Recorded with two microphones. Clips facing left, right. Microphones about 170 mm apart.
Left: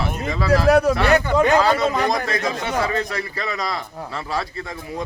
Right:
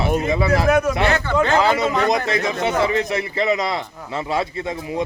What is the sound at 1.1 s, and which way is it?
Speech, 15° left (ahead or behind).